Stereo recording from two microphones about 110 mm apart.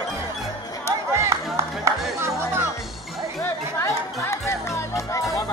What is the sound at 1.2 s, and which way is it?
Music, 25° right (ahead or behind).